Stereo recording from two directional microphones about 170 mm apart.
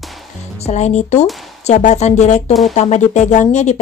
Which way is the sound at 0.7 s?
40° left (ahead or behind).